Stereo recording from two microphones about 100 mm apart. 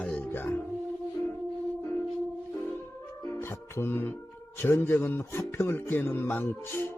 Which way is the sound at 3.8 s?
20° left (ahead or behind).